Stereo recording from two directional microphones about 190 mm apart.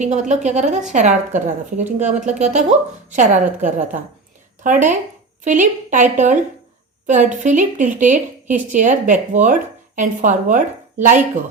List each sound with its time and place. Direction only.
0.0 s a woman's voice: 40° right (ahead or behind)